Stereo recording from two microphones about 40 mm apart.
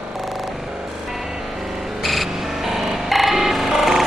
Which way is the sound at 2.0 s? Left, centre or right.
Centre.